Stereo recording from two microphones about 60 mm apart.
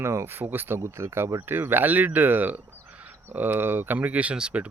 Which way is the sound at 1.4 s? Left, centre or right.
Right.